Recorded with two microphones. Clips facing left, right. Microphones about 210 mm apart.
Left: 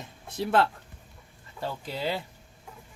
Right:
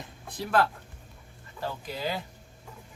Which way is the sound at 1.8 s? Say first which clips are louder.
Left 3 dB; 30° left (ahead or behind).